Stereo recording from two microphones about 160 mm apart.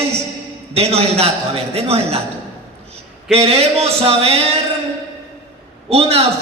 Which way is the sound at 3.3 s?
40° right (ahead or behind).